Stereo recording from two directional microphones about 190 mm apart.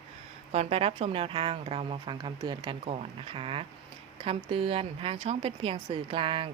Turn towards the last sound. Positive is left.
turn(degrees=-25)  # may be behind; listen again after turning